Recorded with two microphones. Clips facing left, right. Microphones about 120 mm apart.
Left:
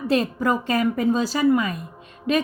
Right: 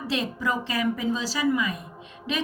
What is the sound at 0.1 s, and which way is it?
A woman's voice, 50° left (ahead or behind).